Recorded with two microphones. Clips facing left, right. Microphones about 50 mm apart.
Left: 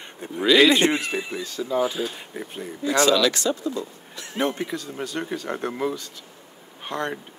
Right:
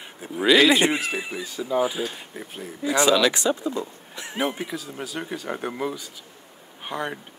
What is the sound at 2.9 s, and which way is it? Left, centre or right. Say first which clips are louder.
Speech: even; centre.